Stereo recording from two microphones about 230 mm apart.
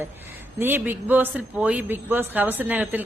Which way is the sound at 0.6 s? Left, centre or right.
Centre.